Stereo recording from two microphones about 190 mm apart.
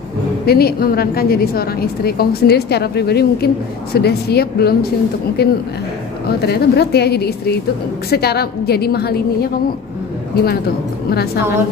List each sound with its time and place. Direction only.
0.5 s a woman's voice: 55° left (ahead or behind)